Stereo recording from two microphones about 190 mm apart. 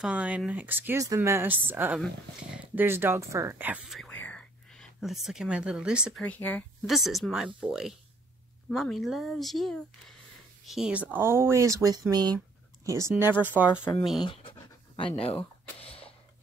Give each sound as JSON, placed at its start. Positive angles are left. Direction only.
{"t": 0.0, "sound": "speech", "side_deg": -5}
{"t": 4.0, "sound": "whispering", "side_deg": 10}
{"t": 6.2, "sound": "speech", "side_deg": 10}
{"t": 13.9, "sound": "speech", "side_deg": 15}
{"t": 14.2, "sound": "speech", "side_deg": 30}